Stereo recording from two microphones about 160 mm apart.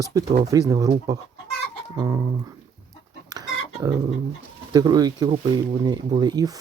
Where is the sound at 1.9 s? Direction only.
25° right (ahead or behind).